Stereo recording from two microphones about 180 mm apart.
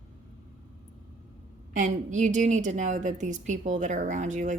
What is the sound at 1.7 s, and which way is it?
A woman's voice, 45° right (ahead or behind).